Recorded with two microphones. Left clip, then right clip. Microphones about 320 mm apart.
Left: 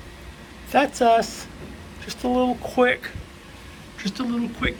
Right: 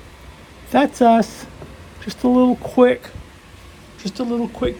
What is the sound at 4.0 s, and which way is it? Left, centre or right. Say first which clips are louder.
Speech: right 4 dB; centre.